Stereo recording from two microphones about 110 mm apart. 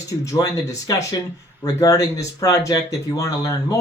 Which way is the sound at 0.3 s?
30° left (ahead or behind).